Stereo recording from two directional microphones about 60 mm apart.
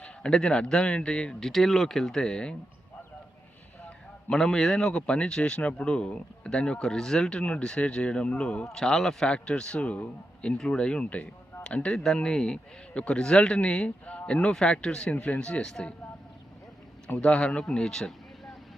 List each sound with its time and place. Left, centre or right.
0.0 s a man's voice: centre
4.3 s a man's voice: centre
8.7 s a man's voice: centre
17.2 s a man's voice: centre